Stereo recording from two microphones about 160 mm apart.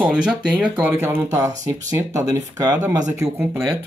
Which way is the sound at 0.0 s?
5° right (ahead or behind).